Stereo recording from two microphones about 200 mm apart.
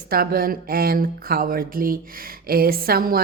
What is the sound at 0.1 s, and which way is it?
A woman's voice, 50° right (ahead or behind).